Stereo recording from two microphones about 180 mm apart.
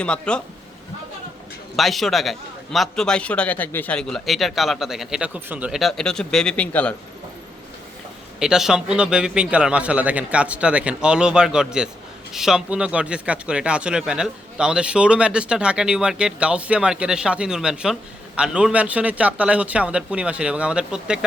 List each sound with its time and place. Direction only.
0.0 s speech: 5° left (ahead or behind)
1.7 s speech: centre (ahead or behind)
8.4 s speech: 5° right (ahead or behind)